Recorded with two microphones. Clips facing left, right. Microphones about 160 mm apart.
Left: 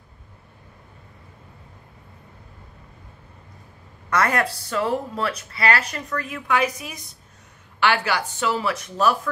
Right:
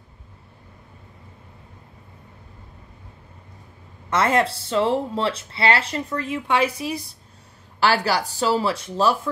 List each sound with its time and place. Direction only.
4.1 s speech: 25° right (ahead or behind)